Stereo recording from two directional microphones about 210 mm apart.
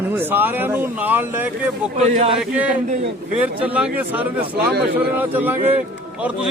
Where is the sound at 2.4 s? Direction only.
5° right (ahead or behind).